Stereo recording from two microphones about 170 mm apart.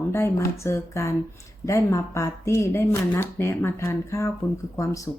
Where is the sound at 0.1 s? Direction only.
15° left (ahead or behind).